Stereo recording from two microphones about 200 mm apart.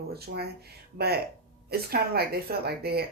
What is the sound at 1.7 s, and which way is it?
Speech, 50° right (ahead or behind).